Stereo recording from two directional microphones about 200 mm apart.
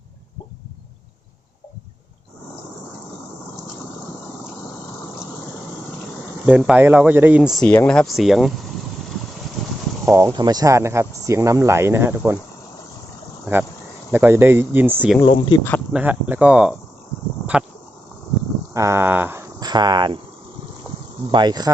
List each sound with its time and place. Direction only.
6.4 s speech: 5° right (ahead or behind)
10.1 s speech: 15° right (ahead or behind)
13.4 s speech: 10° right (ahead or behind)
15.2 s speech: 25° left (ahead or behind)
15.9 s speech: 5° right (ahead or behind)
18.7 s speech: 15° right (ahead or behind)
21.3 s speech: 20° right (ahead or behind)